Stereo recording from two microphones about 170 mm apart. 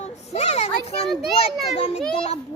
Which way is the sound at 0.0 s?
40° left (ahead or behind).